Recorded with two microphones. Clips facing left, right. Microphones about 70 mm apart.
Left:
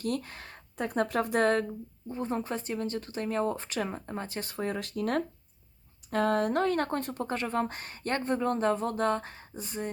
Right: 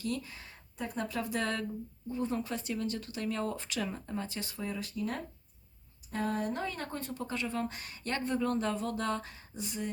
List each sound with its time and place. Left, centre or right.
0.0 s speech: left
6.1 s speech: left